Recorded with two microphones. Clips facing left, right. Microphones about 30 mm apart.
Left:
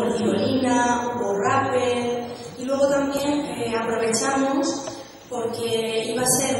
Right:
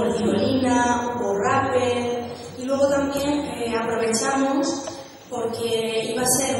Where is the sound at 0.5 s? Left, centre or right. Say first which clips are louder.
Even; centre.